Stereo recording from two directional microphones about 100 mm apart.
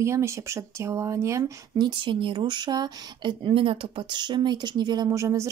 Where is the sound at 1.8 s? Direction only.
50° right (ahead or behind).